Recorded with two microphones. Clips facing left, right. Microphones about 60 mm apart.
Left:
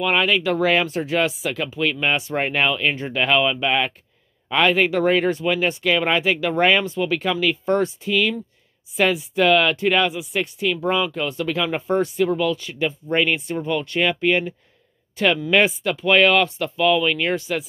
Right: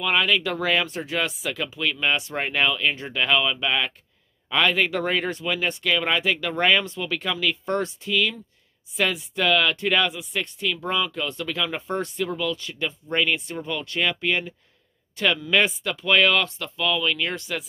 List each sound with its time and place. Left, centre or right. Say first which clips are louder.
0.0 s speech: left 3 dB; centre
0.8 s speech: left 6 dB; centre
11.9 s speech: left 7 dB; centre; by 17.4 s left
17.4 s speech: left 5 dB; centre